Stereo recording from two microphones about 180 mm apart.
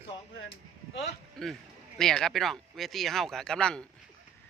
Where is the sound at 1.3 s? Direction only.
Centre (ahead or behind).